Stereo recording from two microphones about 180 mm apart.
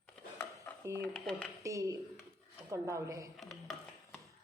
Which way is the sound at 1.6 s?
15° right (ahead or behind).